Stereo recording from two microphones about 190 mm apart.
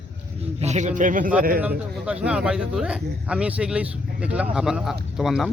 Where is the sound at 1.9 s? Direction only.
5° right (ahead or behind).